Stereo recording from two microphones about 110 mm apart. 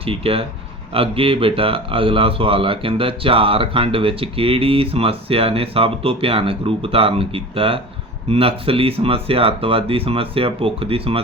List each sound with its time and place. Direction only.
0.0 s speech: 60° right (ahead or behind)